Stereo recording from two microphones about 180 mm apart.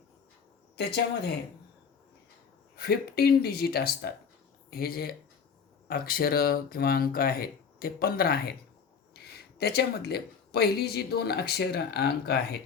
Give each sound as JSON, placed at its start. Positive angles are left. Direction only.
{"t": 2.7, "sound": "speech", "side_deg": 60}
{"t": 9.6, "sound": "speech", "side_deg": 60}